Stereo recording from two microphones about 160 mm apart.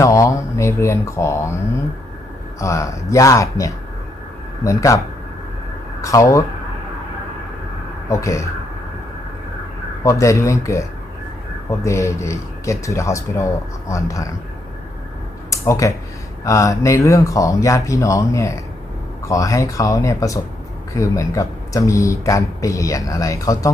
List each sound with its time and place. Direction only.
0.0 s speech: 20° left (ahead or behind)
2.6 s speech: 20° left (ahead or behind)
6.0 s speech: 20° left (ahead or behind)
8.1 s speech: 20° left (ahead or behind)
10.0 s speech: 20° left (ahead or behind)
15.4 s a sound: 20° left (ahead or behind)
16.4 s speech: 20° left (ahead or behind)